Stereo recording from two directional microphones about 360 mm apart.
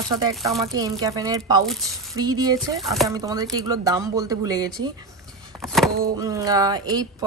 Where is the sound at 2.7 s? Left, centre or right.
Centre.